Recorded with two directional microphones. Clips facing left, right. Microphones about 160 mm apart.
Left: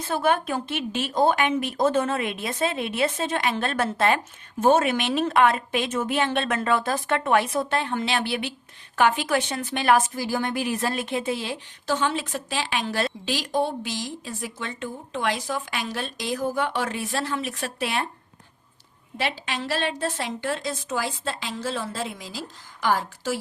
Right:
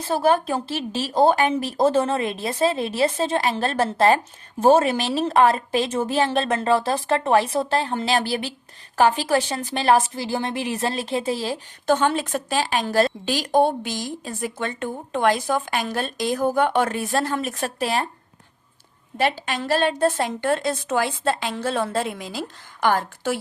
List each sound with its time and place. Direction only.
0.0 s a woman's voice: 30° right (ahead or behind)
11.9 s a woman's voice: 50° right (ahead or behind)
19.1 s a woman's voice: 45° right (ahead or behind)